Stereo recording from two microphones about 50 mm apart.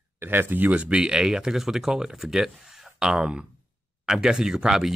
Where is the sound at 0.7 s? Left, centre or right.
Right.